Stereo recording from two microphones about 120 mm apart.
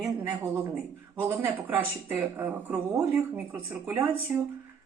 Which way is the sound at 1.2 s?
20° right (ahead or behind).